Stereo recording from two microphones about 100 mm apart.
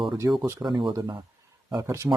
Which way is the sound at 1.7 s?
30° right (ahead or behind).